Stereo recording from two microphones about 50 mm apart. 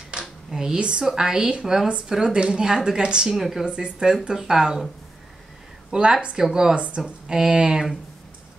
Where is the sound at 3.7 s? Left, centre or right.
Centre.